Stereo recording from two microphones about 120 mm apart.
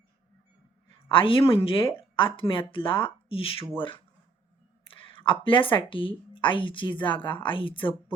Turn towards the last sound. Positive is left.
turn(degrees=45)  # may be behind; listen again after turning